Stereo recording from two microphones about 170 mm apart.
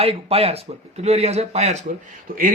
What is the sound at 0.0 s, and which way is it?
Speech, 35° right (ahead or behind).